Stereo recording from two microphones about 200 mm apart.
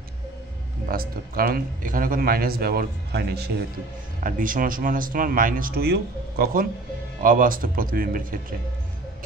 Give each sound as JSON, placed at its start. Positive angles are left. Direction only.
{"t": 0.8, "sound": "speech", "side_deg": -45}
{"t": 4.2, "sound": "speech", "side_deg": -45}